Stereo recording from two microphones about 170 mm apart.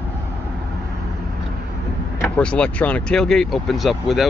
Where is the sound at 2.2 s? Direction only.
10° left (ahead or behind).